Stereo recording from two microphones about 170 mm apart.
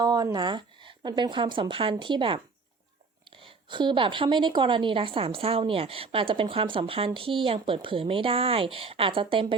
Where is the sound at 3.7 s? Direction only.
30° right (ahead or behind).